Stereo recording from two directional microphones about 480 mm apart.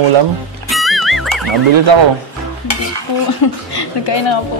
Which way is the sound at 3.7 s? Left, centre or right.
Left.